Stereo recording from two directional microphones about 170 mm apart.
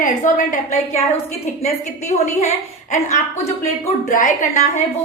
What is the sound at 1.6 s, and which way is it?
Speech, 40° left (ahead or behind).